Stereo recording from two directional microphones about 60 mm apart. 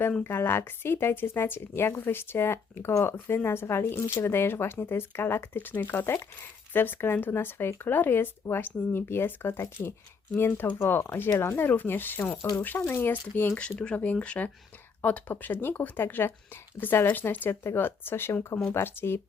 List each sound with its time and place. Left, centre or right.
0.2 s speech: left
13.6 s speech: centre; by 19.2 s left